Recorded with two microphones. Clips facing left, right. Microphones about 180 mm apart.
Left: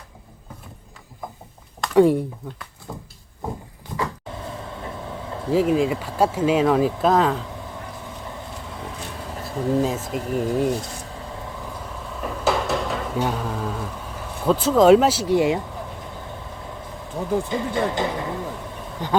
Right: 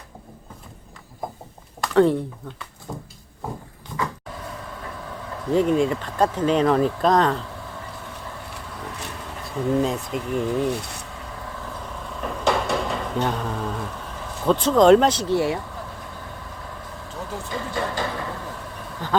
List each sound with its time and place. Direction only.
1.9 s speech: 10° left (ahead or behind)
2.9 s speech: 5° right (ahead or behind)
4.8 s train: 25° left (ahead or behind)
5.5 s speech: 5° left (ahead or behind)
9.1 s a sound: centre (ahead or behind)
10.1 s speech: 40° left (ahead or behind)
10.8 s speech: 65° right (ahead or behind)
12.2 s a sound: 5° left (ahead or behind)
14.4 s speech: 5° left (ahead or behind)
17.5 s speech: 20° left (ahead or behind)